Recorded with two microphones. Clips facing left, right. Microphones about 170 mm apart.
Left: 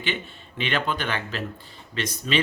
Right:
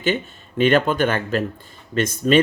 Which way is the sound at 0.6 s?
45° right (ahead or behind).